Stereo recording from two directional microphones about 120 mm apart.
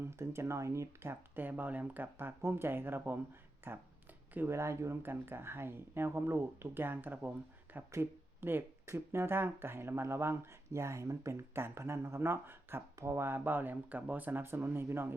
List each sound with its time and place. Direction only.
0.0 s speech: 20° right (ahead or behind)